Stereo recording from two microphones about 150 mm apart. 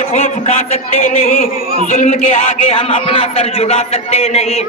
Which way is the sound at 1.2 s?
70° left (ahead or behind).